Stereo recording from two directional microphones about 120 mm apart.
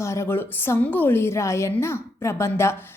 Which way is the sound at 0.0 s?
25° left (ahead or behind).